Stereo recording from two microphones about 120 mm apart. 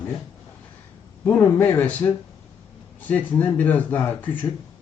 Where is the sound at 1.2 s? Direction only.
20° left (ahead or behind).